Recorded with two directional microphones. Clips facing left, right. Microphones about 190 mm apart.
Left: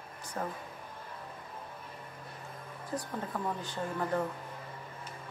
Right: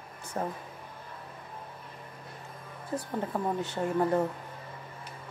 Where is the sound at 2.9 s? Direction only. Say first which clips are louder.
Right 5 dB; 25° right (ahead or behind).